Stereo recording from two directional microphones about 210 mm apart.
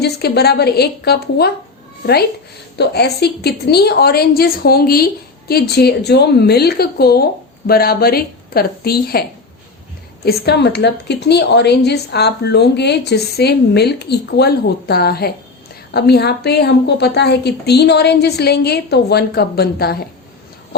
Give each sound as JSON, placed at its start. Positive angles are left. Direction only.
{"t": 0.0, "sound": "a woman's voice", "side_deg": 50}
{"t": 2.7, "sound": "a woman's voice", "side_deg": 50}
{"t": 10.2, "sound": "a woman's voice", "side_deg": 50}